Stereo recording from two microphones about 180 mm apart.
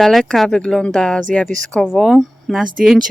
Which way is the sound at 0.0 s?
Centre (ahead or behind).